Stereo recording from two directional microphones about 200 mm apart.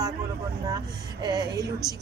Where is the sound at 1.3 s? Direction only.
20° right (ahead or behind).